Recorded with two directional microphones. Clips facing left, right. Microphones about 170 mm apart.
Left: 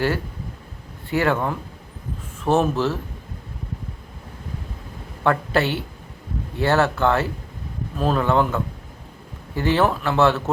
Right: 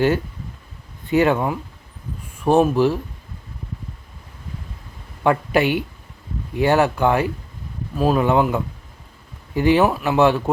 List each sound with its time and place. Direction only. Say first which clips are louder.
1.1 s speech: right 4 dB; 15° right (ahead or behind)
5.2 s speech: right 3 dB; 15° right (ahead or behind)